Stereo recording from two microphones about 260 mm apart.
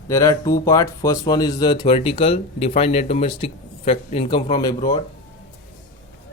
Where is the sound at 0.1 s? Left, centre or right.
Centre.